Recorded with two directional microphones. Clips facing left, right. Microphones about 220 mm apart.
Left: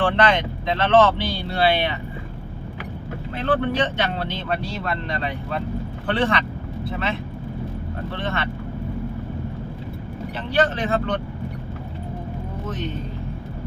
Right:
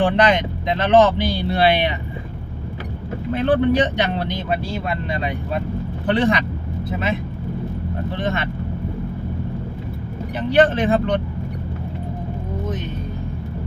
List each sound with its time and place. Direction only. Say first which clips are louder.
0.0 s speech: right 3 dB; 15° right (ahead or behind)
3.4 s speech: right 5 dB; 15° right (ahead or behind)
8.1 s speech: right 3 dB; 15° right (ahead or behind)
10.3 s speech: right 6 dB; 15° right (ahead or behind)
12.6 s speech: even; 15° right (ahead or behind)